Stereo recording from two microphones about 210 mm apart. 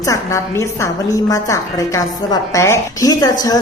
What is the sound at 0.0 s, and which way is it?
Speech, 15° left (ahead or behind).